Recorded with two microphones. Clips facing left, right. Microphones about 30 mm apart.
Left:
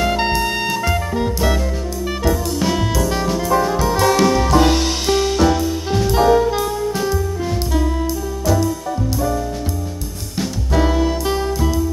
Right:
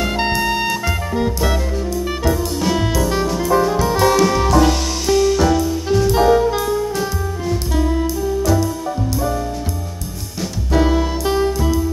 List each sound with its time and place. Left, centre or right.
0.0 s music: centre
4.6 s music: left
5.5 s music: centre
7.7 s music: centre
10.7 s music: centre